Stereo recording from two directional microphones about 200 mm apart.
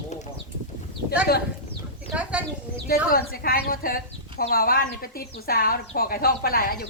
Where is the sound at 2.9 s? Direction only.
50° left (ahead or behind).